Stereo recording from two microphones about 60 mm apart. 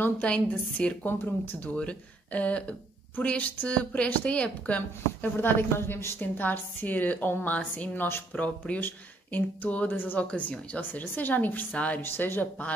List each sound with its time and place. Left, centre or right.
0.2 s a woman's voice: left
1.0 s speech: left
1.8 s a woman's voice: left
6.2 s a woman's voice: left
12.0 s speech: left